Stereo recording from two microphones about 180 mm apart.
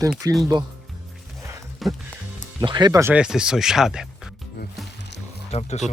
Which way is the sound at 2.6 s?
25° right (ahead or behind).